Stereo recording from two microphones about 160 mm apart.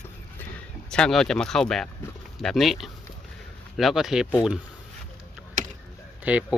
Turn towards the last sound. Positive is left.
turn(degrees=-10)  # may be behind; listen again after turning